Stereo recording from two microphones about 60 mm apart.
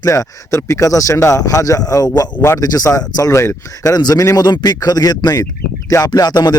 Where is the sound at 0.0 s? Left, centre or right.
Left.